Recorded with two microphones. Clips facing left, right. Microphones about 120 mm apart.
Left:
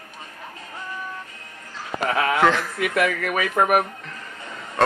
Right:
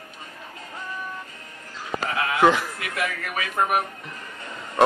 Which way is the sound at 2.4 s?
10° right (ahead or behind).